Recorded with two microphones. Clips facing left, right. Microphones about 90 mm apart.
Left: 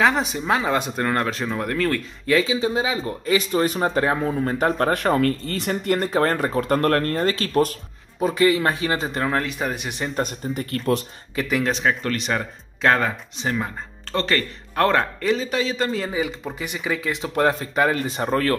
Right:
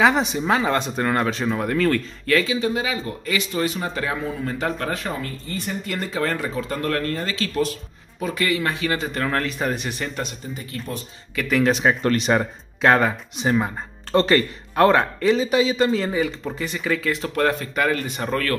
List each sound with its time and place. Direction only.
0.0 s speech: centre (ahead or behind)
2.4 s speech: 25° left (ahead or behind); by 4.9 s 40° left (ahead or behind)
4.9 s speech: 60° left (ahead or behind)
5.9 s speech: 50° left (ahead or behind)
8.2 s speech: 30° left (ahead or behind)
9.3 s speech: 10° left (ahead or behind)
9.8 s speech: 20° left (ahead or behind)
10.5 s speech: 60° left (ahead or behind)
11.6 s speech: 5° right (ahead or behind)
12.2 s speech: 20° right (ahead or behind)
12.8 s speech: 10° right (ahead or behind); by 18.6 s 25° left (ahead or behind)